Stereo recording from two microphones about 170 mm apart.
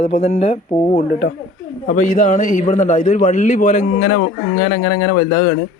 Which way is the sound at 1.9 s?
50° left (ahead or behind).